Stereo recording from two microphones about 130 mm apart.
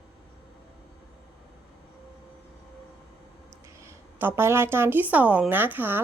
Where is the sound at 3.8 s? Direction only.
15° right (ahead or behind).